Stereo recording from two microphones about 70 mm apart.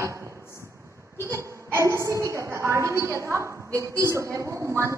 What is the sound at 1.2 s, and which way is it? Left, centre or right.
A woman's voice, right.